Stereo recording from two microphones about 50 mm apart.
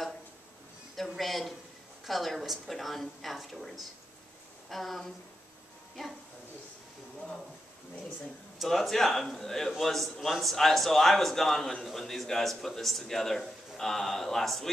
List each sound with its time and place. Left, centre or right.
0.9 s a sound: centre
2.0 s a man's voice: centre
8.6 s a man's voice: centre